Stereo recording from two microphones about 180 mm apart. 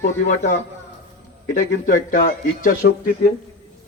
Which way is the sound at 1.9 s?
50° left (ahead or behind).